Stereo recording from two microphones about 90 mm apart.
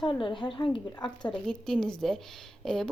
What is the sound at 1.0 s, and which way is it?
Speech, 55° left (ahead or behind).